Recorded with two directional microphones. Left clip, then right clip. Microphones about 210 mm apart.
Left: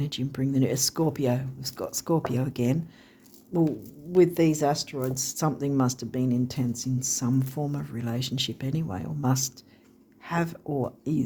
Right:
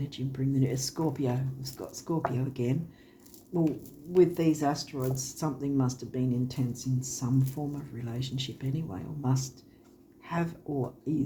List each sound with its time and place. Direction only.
0.0 s speech: 55° left (ahead or behind)